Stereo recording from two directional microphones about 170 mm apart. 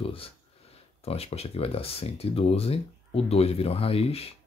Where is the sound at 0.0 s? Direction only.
35° left (ahead or behind).